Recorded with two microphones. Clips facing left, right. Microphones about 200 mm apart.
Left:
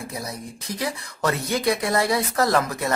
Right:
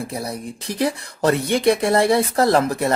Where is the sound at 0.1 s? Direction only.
30° right (ahead or behind).